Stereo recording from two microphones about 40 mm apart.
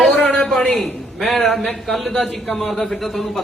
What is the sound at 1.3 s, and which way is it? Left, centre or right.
Speech, centre.